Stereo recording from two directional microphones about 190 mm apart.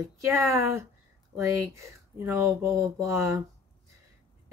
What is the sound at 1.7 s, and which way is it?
Speech, 15° right (ahead or behind).